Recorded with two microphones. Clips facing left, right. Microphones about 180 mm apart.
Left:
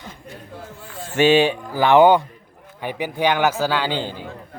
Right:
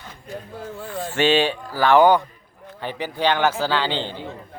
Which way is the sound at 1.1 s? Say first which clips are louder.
Left 4 dB; 15° left (ahead or behind).